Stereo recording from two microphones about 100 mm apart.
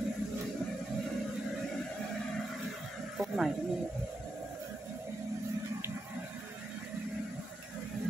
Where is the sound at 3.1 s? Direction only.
Centre (ahead or behind).